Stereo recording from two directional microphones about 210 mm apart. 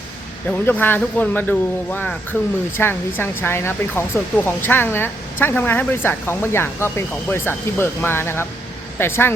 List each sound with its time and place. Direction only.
0.6 s speech: 10° left (ahead or behind)